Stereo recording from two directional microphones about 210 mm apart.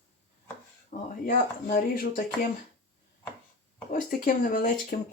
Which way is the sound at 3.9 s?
40° left (ahead or behind).